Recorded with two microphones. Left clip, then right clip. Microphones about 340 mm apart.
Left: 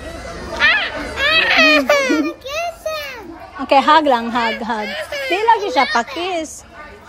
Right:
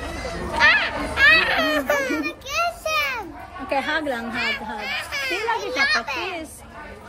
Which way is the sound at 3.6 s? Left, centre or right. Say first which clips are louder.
Left 11 dB; left.